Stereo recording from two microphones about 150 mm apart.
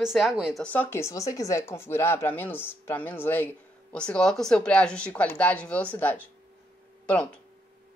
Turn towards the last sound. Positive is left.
turn(degrees=10)  # may be behind; listen again after turning